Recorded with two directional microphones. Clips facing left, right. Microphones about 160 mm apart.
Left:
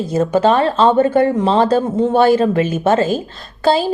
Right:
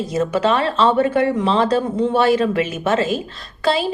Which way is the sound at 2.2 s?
35° left (ahead or behind).